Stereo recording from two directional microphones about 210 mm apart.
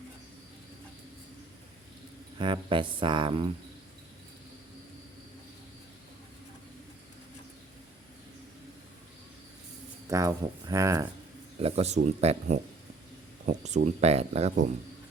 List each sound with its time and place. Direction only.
2.4 s speech: 25° right (ahead or behind)
10.1 s speech: 15° right (ahead or behind)
11.6 s speech: 30° right (ahead or behind)